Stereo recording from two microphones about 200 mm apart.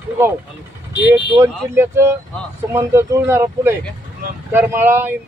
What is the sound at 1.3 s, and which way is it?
Speech, 10° right (ahead or behind).